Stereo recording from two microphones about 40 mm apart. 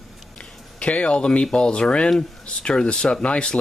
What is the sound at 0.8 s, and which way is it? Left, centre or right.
Speech, left.